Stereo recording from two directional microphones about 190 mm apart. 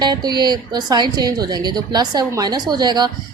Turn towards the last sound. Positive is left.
turn(degrees=-20)  # may be behind; listen again after turning